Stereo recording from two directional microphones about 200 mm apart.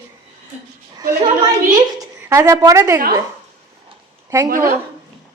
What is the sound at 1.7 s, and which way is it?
A woman's voice, 15° right (ahead or behind).